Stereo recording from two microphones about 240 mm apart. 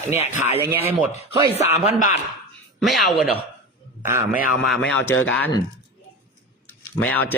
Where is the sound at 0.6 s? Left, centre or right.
Centre.